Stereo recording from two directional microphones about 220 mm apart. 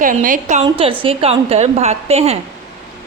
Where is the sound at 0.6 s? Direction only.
25° right (ahead or behind).